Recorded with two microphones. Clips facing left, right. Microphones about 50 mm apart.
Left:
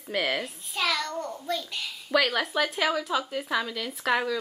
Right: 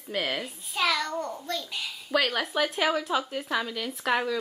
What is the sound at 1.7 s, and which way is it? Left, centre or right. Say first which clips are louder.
A child's voice: left 1 dB; centre.